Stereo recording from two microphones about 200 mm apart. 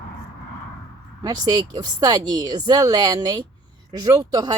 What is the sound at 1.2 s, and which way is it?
Speech, 20° right (ahead or behind).